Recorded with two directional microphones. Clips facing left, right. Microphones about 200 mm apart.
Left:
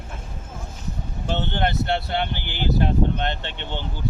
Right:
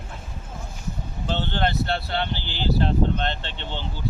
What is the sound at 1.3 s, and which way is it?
Speech, 15° left (ahead or behind).